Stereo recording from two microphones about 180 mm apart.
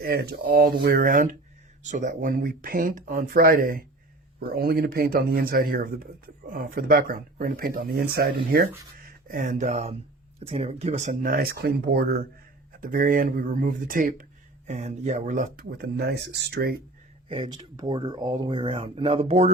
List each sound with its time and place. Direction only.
0.0 s speech: 55° right (ahead or behind)
12.8 s speech: 50° right (ahead or behind)
14.7 s speech: 40° right (ahead or behind); by 16.7 s 65° right (ahead or behind)
17.2 s speech: 30° right (ahead or behind)